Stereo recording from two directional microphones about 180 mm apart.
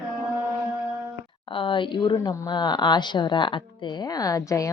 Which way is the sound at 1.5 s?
30° left (ahead or behind).